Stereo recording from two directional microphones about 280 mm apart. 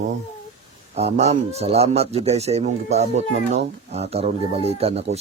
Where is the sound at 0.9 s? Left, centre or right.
Right.